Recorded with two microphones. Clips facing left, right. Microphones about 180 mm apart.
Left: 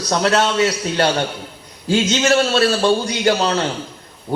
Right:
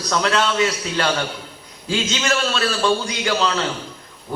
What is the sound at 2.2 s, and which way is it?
Speech, 35° left (ahead or behind).